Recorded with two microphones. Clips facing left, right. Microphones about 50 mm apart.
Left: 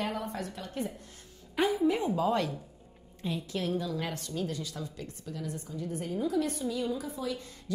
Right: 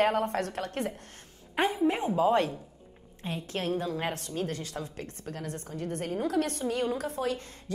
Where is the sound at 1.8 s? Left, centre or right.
Right.